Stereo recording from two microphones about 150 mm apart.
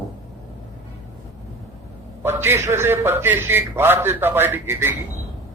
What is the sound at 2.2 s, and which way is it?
A man's voice, 15° right (ahead or behind).